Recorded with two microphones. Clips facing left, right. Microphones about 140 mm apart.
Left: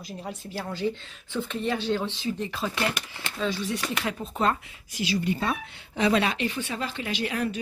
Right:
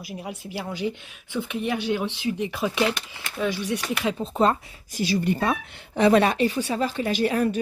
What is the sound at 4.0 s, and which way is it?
A woman's voice, 25° right (ahead or behind).